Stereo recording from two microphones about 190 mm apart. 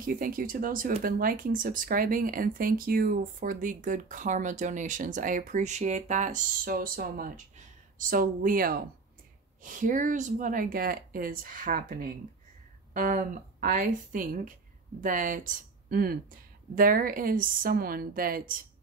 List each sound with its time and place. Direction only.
0.0 s speech: 45° right (ahead or behind)